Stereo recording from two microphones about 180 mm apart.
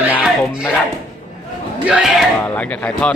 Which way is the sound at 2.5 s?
5° left (ahead or behind).